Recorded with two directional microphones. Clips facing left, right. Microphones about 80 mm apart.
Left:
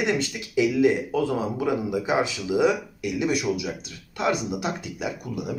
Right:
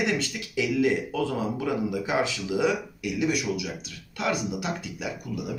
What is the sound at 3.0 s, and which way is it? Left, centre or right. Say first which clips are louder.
Speech: left 1 dB; left.